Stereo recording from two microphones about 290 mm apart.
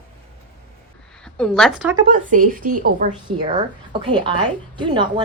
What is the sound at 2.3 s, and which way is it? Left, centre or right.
Speech, right.